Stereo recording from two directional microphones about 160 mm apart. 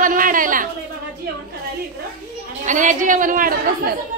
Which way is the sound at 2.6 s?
50° right (ahead or behind).